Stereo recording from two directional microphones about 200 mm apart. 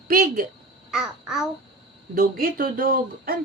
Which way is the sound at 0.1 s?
45° right (ahead or behind).